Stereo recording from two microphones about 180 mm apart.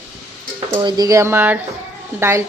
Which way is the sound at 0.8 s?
20° right (ahead or behind).